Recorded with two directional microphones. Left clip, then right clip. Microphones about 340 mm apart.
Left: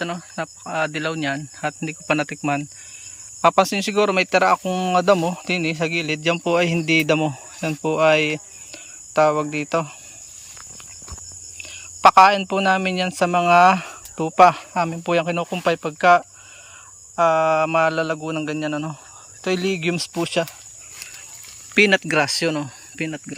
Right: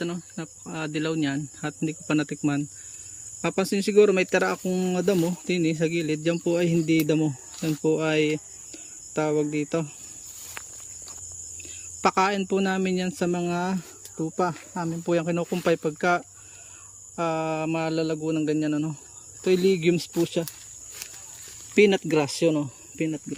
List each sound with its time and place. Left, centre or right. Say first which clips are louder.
0.0 s speech: left 6 dB; centre
11.5 s speech: left 5 dB; centre
21.8 s speech: left 4 dB; centre
23.0 s speech: left 1 dB; left